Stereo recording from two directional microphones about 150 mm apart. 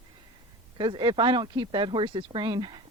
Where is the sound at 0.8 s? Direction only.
30° right (ahead or behind).